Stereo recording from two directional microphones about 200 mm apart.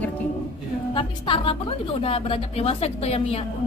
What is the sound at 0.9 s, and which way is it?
A woman's voice, 25° left (ahead or behind).